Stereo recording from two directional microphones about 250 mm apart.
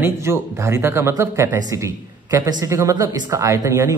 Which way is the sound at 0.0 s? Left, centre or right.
Centre.